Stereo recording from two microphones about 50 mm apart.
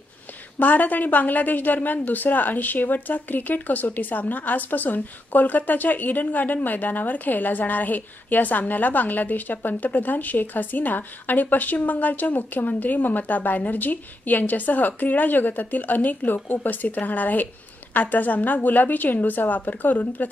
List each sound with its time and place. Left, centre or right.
0.6 s a woman's voice: left